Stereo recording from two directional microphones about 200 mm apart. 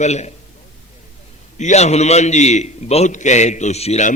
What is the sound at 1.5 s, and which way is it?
A man's voice, 35° left (ahead or behind).